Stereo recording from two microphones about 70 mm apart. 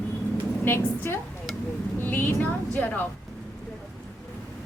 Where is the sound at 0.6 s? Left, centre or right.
Left.